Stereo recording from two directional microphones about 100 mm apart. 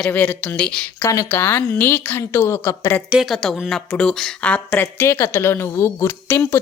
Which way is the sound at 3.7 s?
5° left (ahead or behind).